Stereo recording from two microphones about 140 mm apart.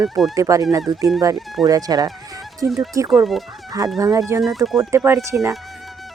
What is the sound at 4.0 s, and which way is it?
Speech, 25° right (ahead or behind).